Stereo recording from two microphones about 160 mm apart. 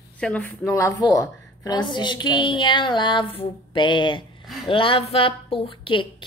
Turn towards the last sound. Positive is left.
turn(degrees=30)  # may be behind; listen again after turning